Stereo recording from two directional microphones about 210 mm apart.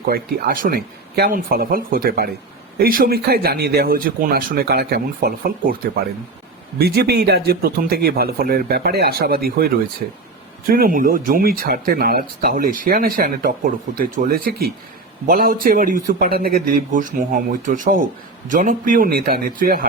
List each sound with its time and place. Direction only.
0.0 s speech: 45° right (ahead or behind)